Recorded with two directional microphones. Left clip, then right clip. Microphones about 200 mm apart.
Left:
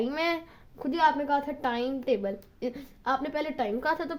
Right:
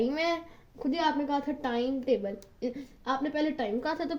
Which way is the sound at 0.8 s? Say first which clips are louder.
Left 4 dB; 40° left (ahead or behind).